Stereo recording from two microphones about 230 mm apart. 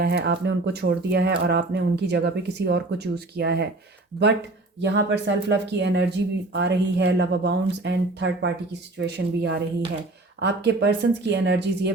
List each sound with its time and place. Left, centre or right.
0.0 s speech: right
4.8 s speech: right